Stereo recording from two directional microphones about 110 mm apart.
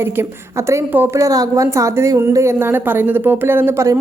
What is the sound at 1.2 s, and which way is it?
A woman's voice, 30° right (ahead or behind).